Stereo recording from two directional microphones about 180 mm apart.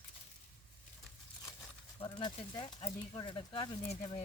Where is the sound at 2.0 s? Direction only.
25° left (ahead or behind).